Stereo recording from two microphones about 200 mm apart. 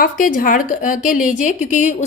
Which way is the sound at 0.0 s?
40° left (ahead or behind).